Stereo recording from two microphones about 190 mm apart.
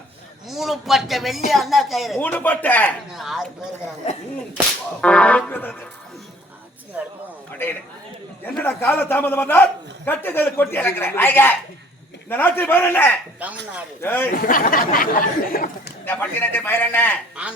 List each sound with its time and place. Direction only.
0.4 s a man's voice: centre (ahead or behind)
3.1 s speech: centre (ahead or behind)
4.9 s a woman's voice: 5° left (ahead or behind)
6.9 s speech: 10° right (ahead or behind)
7.6 s a woman's voice: 10° left (ahead or behind)
13.4 s speech: 10° right (ahead or behind)
14.0 s a woman's voice: 10° left (ahead or behind)
14.4 s speech: 45° left (ahead or behind)
16.0 s a woman's voice: 10° left (ahead or behind)